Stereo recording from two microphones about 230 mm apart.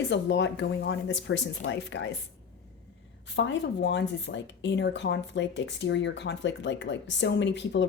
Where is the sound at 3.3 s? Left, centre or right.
Left.